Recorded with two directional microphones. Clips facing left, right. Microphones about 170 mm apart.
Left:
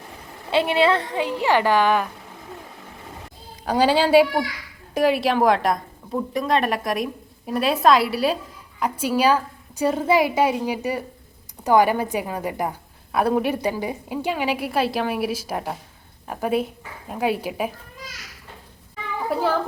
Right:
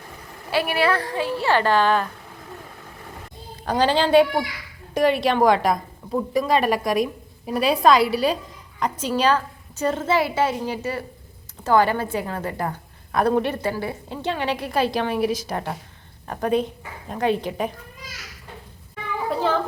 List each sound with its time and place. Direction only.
0.5 s a woman's voice: 20° left (ahead or behind)
3.5 s a child's voice: 10° left (ahead or behind)
19.3 s a woman's voice: 10° left (ahead or behind)